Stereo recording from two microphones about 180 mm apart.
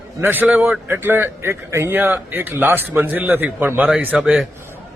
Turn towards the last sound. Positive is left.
turn(degrees=-5)  # may be behind; listen again after turning